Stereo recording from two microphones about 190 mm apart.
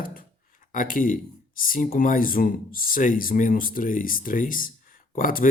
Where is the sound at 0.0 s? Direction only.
45° left (ahead or behind).